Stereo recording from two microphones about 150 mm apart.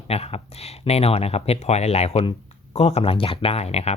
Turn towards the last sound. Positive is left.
turn(degrees=45)  # may be behind; listen again after turning